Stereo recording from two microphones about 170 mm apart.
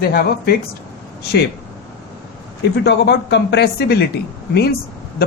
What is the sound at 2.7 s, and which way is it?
A woman's voice, 75° left (ahead or behind).